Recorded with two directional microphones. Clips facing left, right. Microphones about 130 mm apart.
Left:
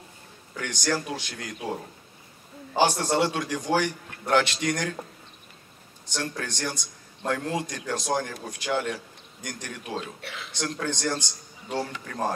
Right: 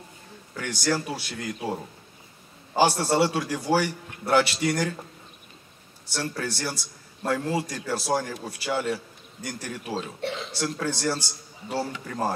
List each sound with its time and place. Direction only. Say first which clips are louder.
0.6 s a man's voice: right 1 dB; 5° right (ahead or behind)
6.1 s a man's voice: right 2 dB; 5° right (ahead or behind)
10.2 s speech: right 9 dB; 25° right (ahead or behind)
10.5 s a man's voice: left 4 dB; 5° right (ahead or behind)